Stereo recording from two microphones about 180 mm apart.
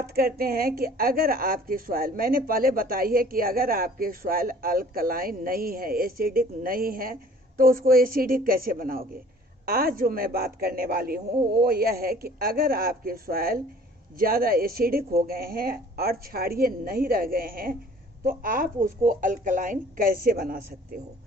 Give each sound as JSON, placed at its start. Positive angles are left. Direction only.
{"t": 0.0, "sound": "a woman's voice", "side_deg": -55}